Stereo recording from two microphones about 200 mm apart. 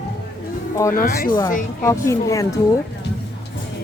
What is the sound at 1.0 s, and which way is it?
Speech, 45° left (ahead or behind).